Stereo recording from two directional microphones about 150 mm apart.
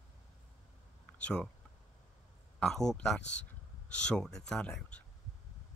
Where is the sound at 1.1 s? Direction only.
5° left (ahead or behind).